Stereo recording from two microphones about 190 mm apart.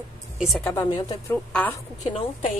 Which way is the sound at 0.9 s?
20° left (ahead or behind).